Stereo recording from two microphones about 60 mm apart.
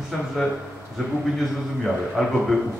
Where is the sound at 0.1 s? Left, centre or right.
Centre.